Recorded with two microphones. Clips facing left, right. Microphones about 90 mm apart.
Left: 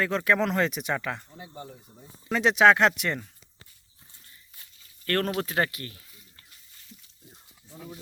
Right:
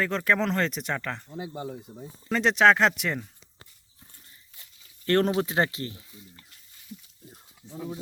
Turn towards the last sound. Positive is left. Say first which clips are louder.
# right 7 dB
turn(degrees=-20)  # may be behind; listen again after turning